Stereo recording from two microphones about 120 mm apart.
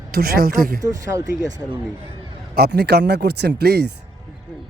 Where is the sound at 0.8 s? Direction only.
30° right (ahead or behind).